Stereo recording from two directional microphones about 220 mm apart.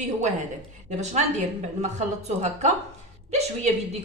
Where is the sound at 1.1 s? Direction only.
30° right (ahead or behind).